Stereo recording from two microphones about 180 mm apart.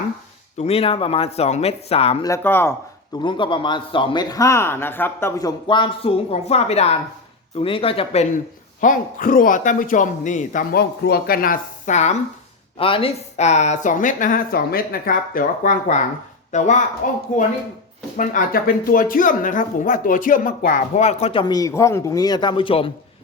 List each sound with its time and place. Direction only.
0.6 s speech: 35° left (ahead or behind)
2.2 s speech: 15° left (ahead or behind)
3.2 s a man's voice: 25° left (ahead or behind)
8.8 s speech: 45° left (ahead or behind); by 22.9 s 30° left (ahead or behind)